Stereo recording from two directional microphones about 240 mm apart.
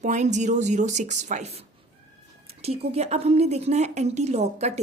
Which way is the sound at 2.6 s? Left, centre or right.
Right.